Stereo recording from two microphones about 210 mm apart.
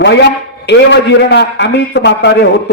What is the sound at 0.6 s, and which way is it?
A man's voice, 55° left (ahead or behind).